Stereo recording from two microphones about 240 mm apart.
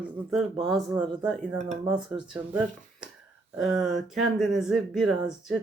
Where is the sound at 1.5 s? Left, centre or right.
Right.